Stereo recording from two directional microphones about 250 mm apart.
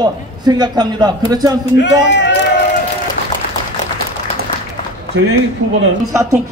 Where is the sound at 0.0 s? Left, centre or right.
Centre.